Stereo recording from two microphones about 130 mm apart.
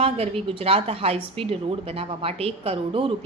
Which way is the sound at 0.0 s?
45° right (ahead or behind).